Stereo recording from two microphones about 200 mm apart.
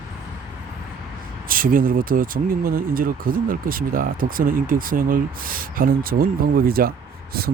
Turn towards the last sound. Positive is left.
turn(degrees=-50)  # may be behind; listen again after turning